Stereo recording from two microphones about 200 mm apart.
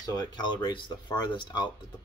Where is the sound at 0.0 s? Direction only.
20° left (ahead or behind).